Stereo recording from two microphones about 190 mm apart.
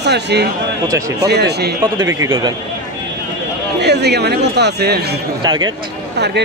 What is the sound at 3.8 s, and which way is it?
Speech, 60° right (ahead or behind).